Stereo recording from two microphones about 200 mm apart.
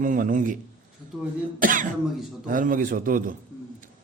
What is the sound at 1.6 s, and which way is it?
A man's voice, 40° right (ahead or behind).